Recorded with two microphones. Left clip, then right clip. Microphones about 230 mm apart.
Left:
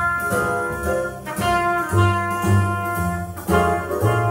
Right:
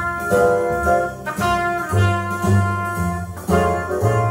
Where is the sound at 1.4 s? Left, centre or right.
Right.